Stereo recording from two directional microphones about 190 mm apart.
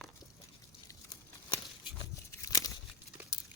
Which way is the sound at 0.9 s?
20° left (ahead or behind).